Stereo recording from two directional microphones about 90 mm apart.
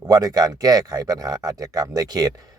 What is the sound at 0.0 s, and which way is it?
Speech, 45° right (ahead or behind).